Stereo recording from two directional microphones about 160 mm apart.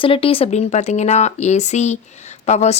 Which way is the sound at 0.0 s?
35° left (ahead or behind).